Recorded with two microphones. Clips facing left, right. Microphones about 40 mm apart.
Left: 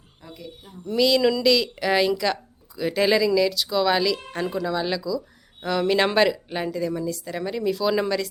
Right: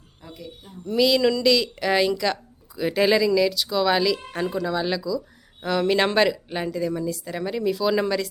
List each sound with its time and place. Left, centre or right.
0.2 s speech: centre